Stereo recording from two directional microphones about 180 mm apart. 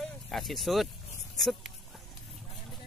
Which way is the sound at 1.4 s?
Centre (ahead or behind).